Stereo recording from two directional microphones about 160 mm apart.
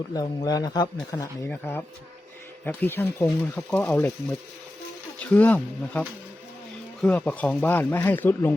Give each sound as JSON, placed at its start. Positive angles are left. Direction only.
{"t": 0.1, "sound": "speech", "side_deg": 25}
{"t": 1.5, "sound": "speech", "side_deg": 15}